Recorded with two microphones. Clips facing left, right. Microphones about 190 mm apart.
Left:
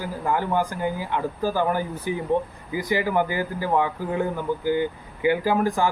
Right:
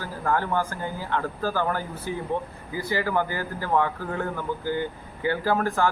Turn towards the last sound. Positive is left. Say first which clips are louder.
# left 2 dB
turn(degrees=15)  # may be behind; listen again after turning